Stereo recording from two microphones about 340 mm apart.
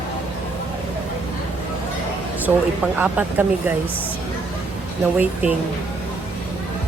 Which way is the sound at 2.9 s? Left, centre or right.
Centre.